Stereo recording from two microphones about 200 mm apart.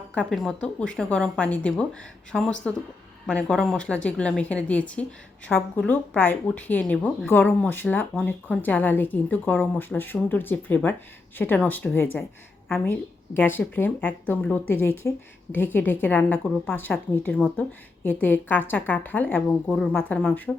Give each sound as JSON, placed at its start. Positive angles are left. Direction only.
{"t": 0.1, "sound": "a woman's voice", "side_deg": 5}